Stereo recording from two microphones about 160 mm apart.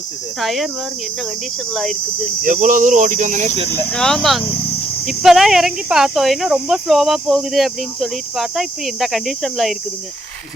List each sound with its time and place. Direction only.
0.3 s speech: centre (ahead or behind)
1.7 s speech: centre (ahead or behind)
2.4 s speech: 55° right (ahead or behind)
3.9 s speech: 5° left (ahead or behind)